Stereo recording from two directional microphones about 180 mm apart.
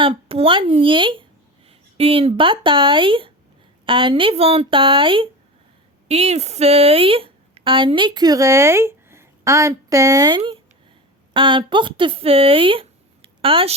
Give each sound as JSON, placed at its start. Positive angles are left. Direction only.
{"t": 0.0, "sound": "a woman's voice", "side_deg": -30}